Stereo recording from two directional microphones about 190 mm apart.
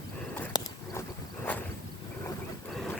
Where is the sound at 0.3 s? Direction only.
15° left (ahead or behind).